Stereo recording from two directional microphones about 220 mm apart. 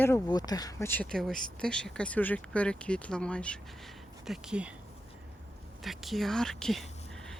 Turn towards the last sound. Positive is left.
turn(degrees=0)  # may be behind; listen again after turning